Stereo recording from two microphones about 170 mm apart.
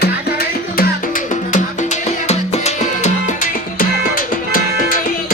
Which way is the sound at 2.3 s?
40° left (ahead or behind).